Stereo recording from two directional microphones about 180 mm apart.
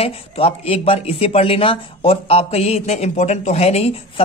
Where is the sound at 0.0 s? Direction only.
35° left (ahead or behind).